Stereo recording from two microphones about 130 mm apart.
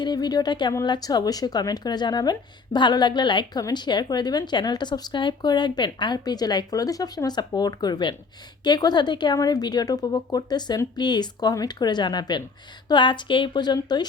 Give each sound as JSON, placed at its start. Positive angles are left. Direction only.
{"t": 0.0, "sound": "speech", "side_deg": 35}